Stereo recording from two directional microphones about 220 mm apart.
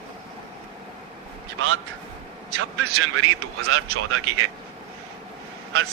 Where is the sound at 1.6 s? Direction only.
65° right (ahead or behind).